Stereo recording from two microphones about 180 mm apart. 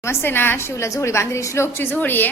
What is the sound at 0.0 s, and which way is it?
A woman's voice, 15° left (ahead or behind).